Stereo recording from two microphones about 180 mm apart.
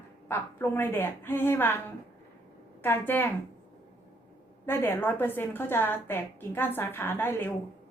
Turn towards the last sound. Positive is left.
turn(degrees=10)  # may be behind; listen again after turning